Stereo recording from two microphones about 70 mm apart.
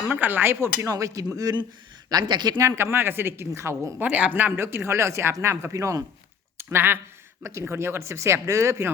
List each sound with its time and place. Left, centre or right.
0.1 s speech: right
2.0 s speech: right
2.7 s speech: right
4.0 s speech: right
6.6 s speech: right